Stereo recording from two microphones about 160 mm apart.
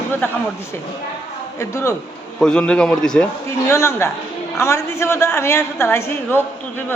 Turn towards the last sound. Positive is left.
turn(degrees=15)  # may be behind; listen again after turning